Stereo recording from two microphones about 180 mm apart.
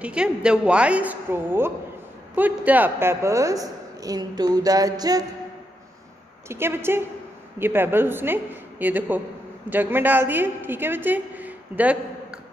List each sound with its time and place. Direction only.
0.0 s a woman's voice: 5° right (ahead or behind); by 5.2 s 20° right (ahead or behind)
6.5 s a woman's voice: 15° right (ahead or behind)